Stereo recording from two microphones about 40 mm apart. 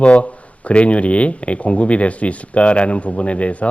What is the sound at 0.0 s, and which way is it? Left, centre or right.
A man's voice, left.